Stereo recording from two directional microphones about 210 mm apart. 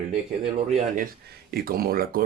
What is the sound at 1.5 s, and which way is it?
Speech, 45° right (ahead or behind).